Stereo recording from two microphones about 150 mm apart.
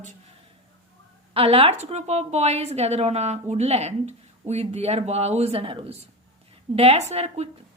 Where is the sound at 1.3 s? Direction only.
40° right (ahead or behind).